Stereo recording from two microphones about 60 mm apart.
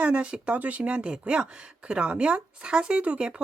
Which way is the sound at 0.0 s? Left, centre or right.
Centre.